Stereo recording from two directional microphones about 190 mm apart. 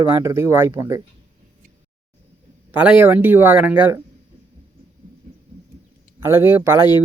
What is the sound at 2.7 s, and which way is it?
Speech, 10° right (ahead or behind).